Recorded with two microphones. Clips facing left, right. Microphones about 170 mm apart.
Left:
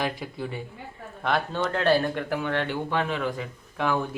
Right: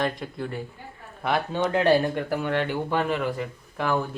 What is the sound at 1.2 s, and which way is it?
Speech, 10° right (ahead or behind).